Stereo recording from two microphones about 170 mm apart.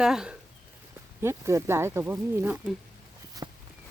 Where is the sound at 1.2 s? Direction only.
15° right (ahead or behind).